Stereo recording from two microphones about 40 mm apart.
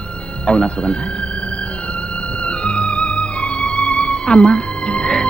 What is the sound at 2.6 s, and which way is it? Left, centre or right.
Music, left.